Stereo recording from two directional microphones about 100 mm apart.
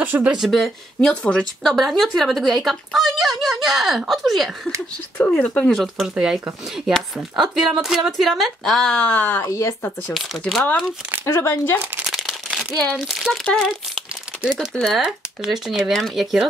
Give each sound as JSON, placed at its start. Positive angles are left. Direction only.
{"t": 0.0, "sound": "speech", "side_deg": -15}
{"t": 0.4, "sound": "speech", "side_deg": 0}
{"t": 5.1, "sound": "speech", "side_deg": 15}
{"t": 5.7, "sound": "speech", "side_deg": 0}
{"t": 9.4, "sound": "speech", "side_deg": 30}
{"t": 11.2, "sound": "speech", "side_deg": 25}
{"t": 12.0, "sound": "crumpling", "side_deg": 0}
{"t": 12.9, "sound": "speech", "side_deg": 0}
{"t": 14.4, "sound": "speech", "side_deg": -5}